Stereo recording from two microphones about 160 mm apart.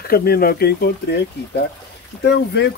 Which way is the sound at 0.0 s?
70° left (ahead or behind).